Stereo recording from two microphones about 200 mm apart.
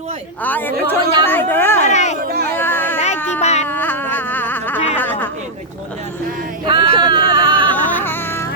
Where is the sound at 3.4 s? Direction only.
35° left (ahead or behind).